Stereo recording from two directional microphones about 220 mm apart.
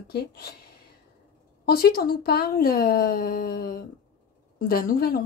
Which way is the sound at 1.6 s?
45° left (ahead or behind).